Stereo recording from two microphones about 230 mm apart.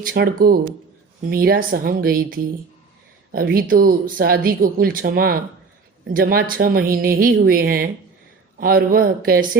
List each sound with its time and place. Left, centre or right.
0.0 s speech: right